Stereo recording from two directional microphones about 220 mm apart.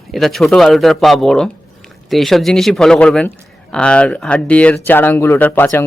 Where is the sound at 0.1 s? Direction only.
Centre (ahead or behind).